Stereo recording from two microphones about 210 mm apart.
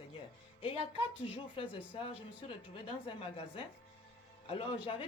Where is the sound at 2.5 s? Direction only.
25° left (ahead or behind).